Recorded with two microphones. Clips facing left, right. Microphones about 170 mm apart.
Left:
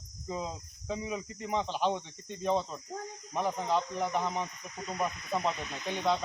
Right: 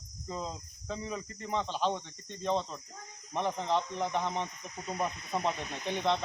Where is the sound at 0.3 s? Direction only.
10° left (ahead or behind).